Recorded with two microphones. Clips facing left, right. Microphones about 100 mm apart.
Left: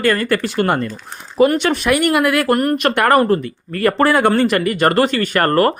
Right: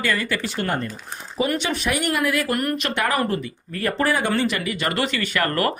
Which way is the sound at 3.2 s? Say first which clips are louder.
Left 8 dB; 50° left (ahead or behind).